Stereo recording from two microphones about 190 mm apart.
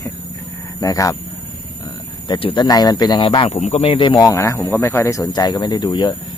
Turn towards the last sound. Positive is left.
turn(degrees=25)  # may be behind; listen again after turning